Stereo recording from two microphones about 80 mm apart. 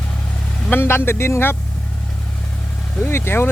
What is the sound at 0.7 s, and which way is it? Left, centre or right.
Speech, left.